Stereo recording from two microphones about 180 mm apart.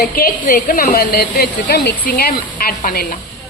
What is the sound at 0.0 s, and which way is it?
A woman's voice, 60° left (ahead or behind).